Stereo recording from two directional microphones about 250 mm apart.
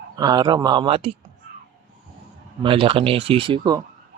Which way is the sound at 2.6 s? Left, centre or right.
Right.